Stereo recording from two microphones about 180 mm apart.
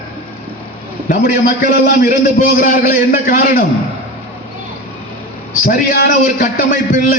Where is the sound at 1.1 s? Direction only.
45° left (ahead or behind).